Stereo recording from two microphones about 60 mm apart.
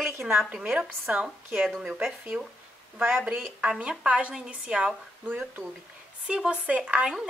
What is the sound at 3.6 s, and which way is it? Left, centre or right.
A woman's voice, centre.